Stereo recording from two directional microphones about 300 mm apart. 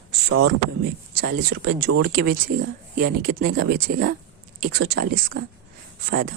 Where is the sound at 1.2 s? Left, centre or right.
Right.